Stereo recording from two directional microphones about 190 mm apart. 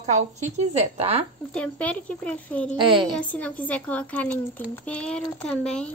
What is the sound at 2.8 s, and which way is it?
Speech, 25° right (ahead or behind).